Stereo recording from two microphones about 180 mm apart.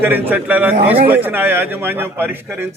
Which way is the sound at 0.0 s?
10° right (ahead or behind).